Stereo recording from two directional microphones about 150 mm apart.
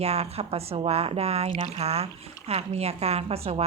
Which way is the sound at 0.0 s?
45° right (ahead or behind).